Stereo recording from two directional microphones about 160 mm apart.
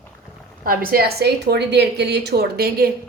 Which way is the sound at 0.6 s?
65° right (ahead or behind).